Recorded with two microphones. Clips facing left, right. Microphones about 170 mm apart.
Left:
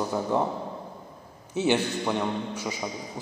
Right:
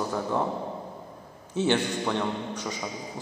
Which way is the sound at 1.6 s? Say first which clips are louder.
Left 1 dB; 10° left (ahead or behind).